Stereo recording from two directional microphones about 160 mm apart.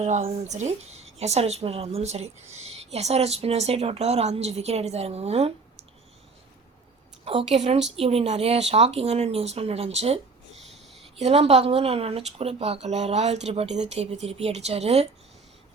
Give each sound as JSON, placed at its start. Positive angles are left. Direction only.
{"t": 0.0, "sound": "speech", "side_deg": -40}
{"t": 7.3, "sound": "speech", "side_deg": -40}
{"t": 11.2, "sound": "speech", "side_deg": -40}